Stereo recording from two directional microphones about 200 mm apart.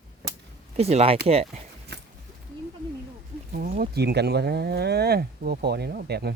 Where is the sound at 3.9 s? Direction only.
55° right (ahead or behind).